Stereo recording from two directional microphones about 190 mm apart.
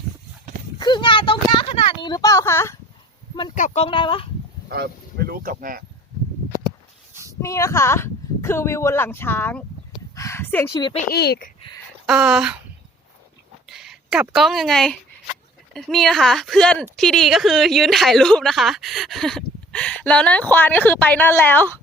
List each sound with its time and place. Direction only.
0.8 s a sound: 25° left (ahead or behind)
3.5 s speech: 40° left (ahead or behind)
4.7 s speech: 55° right (ahead or behind)
7.1 s a sound: 15° right (ahead or behind)
7.4 s a woman's voice: 15° left (ahead or behind)
10.7 s speech: 20° left (ahead or behind)
11.1 s speech: 55° left (ahead or behind)
12.0 s speech: 5° right (ahead or behind)
13.7 s speech: centre (ahead or behind)